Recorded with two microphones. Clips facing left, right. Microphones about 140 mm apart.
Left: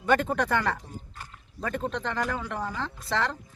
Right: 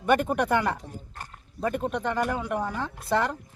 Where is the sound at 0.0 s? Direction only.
15° right (ahead or behind).